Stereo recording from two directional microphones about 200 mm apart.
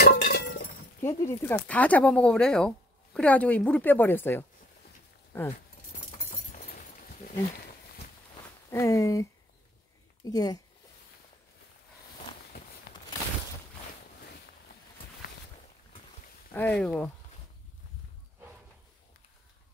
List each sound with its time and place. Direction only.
0.0 s chink: 50° left (ahead or behind)
1.0 s speech: 15° left (ahead or behind)
8.6 s speech: 15° left (ahead or behind)
12.9 s a sound: 55° left (ahead or behind)
16.5 s speech: 5° left (ahead or behind)